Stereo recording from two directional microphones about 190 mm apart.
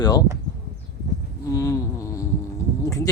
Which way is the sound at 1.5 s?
15° left (ahead or behind).